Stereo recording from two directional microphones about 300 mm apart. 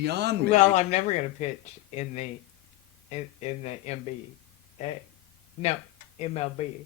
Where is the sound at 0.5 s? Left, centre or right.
Left.